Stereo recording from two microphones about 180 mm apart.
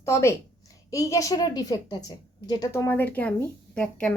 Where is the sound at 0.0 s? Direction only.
15° left (ahead or behind).